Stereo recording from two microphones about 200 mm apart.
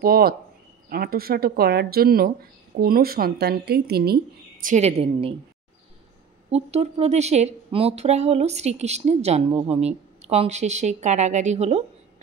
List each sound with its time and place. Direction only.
0.0 s speech: 50° right (ahead or behind); by 5.3 s 30° right (ahead or behind)
6.5 s a woman's voice: 30° right (ahead or behind)